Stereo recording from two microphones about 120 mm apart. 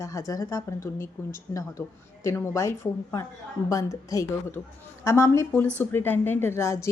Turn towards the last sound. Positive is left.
turn(degrees=25)  # may be behind; listen again after turning